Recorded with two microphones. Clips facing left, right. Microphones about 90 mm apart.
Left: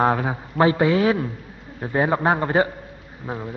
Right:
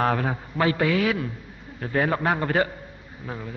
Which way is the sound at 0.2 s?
15° left (ahead or behind).